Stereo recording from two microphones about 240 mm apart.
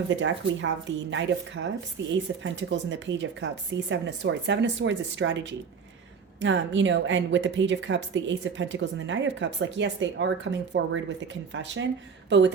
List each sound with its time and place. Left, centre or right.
0.1 s a woman's voice: right